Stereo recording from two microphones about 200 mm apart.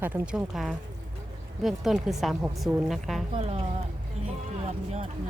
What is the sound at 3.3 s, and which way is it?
Speech, 30° right (ahead or behind).